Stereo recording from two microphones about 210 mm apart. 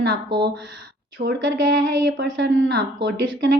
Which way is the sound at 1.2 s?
45° right (ahead or behind).